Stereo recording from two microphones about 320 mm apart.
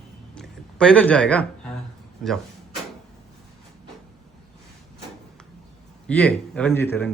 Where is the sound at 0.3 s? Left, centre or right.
Centre.